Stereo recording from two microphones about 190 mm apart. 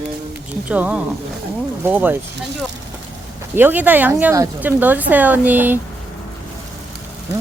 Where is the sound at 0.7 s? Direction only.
5° right (ahead or behind).